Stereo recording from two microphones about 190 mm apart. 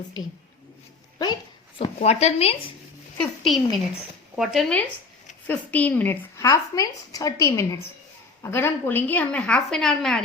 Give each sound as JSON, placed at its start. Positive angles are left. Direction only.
{"t": 1.8, "sound": "speech", "side_deg": 35}
{"t": 3.2, "sound": "a woman's voice", "side_deg": 0}